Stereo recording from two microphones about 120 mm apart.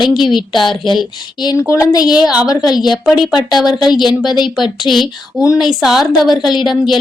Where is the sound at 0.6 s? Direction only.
40° left (ahead or behind).